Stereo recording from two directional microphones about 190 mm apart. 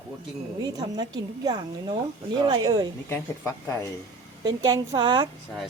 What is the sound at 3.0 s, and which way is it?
Speech, 10° left (ahead or behind).